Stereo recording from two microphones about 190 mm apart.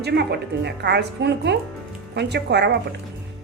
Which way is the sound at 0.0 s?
60° right (ahead or behind).